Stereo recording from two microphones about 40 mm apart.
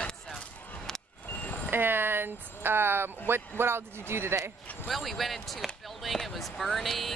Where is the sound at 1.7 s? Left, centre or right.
Right.